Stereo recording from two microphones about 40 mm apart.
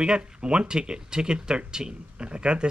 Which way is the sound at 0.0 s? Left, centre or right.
Right.